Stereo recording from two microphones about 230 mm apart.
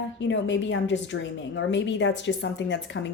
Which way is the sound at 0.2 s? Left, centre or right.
Left.